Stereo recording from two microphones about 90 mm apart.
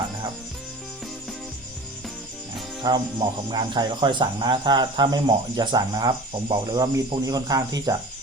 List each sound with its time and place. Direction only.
2.8 s speech: 50° right (ahead or behind)